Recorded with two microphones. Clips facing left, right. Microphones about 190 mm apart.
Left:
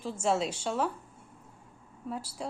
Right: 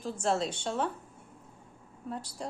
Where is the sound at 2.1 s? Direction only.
5° left (ahead or behind).